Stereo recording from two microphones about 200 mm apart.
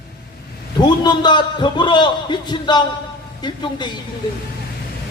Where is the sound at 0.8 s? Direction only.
20° left (ahead or behind).